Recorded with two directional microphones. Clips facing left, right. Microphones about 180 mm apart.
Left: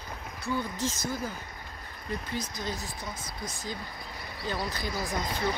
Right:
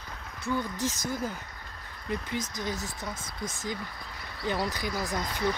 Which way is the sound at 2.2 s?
20° right (ahead or behind).